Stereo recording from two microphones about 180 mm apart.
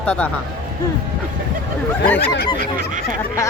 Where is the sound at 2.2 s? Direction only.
65° left (ahead or behind).